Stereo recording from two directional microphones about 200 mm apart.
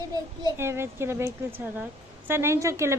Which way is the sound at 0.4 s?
15° right (ahead or behind).